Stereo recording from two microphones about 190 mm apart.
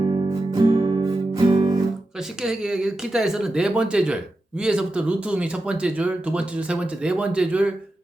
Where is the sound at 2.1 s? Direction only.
5° right (ahead or behind).